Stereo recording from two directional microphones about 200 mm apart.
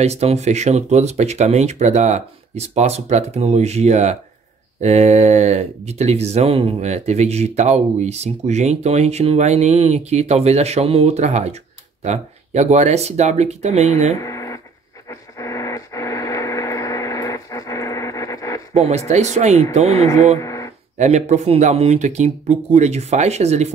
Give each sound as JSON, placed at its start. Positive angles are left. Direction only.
{"t": 0.0, "sound": "speech", "side_deg": -30}
{"t": 14.1, "sound": "a sound", "side_deg": 15}
{"t": 15.0, "sound": "radio", "side_deg": 15}
{"t": 18.7, "sound": "speech", "side_deg": -35}
{"t": 20.3, "sound": "a sound", "side_deg": 15}
{"t": 21.0, "sound": "speech", "side_deg": -35}